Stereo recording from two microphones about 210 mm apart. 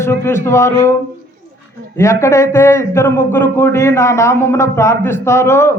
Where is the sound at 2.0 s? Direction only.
15° left (ahead or behind).